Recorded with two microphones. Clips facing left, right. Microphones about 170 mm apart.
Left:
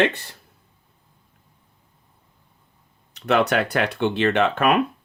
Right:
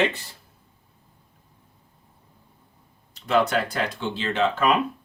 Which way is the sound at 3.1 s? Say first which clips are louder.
Left 2 dB; 70° left (ahead or behind).